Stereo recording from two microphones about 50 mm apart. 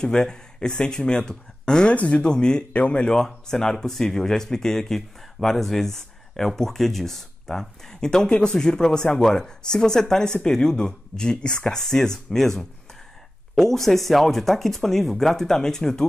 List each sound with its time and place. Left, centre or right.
0.0 s speech: centre
2.0 s speech: left
3.1 s speech: centre